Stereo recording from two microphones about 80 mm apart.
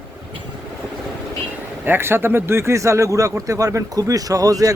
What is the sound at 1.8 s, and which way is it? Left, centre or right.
Speech, right.